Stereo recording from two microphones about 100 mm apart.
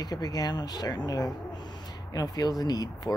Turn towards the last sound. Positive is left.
turn(degrees=40)  # may be behind; listen again after turning